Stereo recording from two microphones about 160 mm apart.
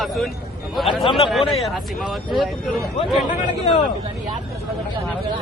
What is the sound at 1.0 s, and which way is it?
Speech, 35° left (ahead or behind).